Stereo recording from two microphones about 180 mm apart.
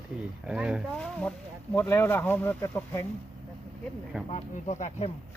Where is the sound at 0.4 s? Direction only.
5° right (ahead or behind).